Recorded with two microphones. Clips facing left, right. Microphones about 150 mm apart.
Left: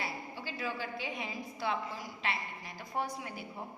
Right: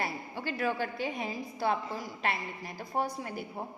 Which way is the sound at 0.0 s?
55° right (ahead or behind).